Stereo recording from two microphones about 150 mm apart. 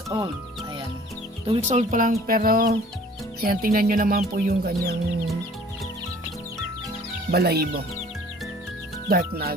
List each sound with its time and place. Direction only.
0.1 s speech: 25° right (ahead or behind)
1.6 s speech: 50° right (ahead or behind); by 4.9 s 90° right
7.3 s speech: 90° right
9.0 s speech: 90° right